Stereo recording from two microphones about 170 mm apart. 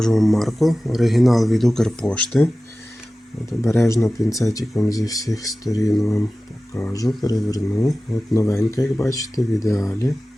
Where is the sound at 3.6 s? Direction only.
15° left (ahead or behind).